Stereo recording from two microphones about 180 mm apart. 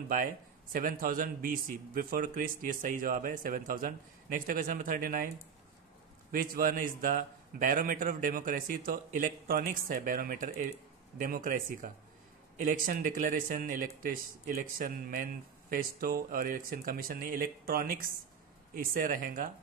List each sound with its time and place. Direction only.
0.7 s a man's voice: 50° right (ahead or behind)
6.3 s a man's voice: 50° right (ahead or behind)